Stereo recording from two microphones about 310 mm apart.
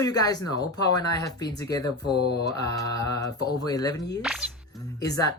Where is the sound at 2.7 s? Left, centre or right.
Centre.